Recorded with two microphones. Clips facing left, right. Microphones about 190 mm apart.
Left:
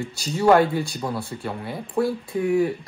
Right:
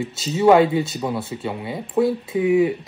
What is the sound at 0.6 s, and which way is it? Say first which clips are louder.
Speech: right 4 dB; 20° right (ahead or behind).